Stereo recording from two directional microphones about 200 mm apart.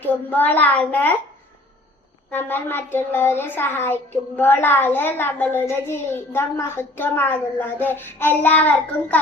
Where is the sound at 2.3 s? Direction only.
10° left (ahead or behind).